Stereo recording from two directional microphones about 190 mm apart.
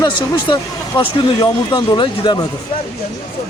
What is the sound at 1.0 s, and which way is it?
Speech, 25° left (ahead or behind).